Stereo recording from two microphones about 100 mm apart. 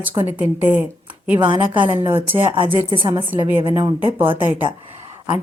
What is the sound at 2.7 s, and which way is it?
Speech, 55° right (ahead or behind).